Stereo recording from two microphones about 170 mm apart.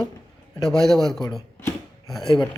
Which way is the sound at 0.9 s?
Centre (ahead or behind).